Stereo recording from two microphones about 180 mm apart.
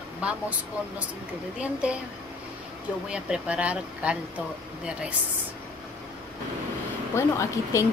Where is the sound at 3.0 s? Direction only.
5° right (ahead or behind).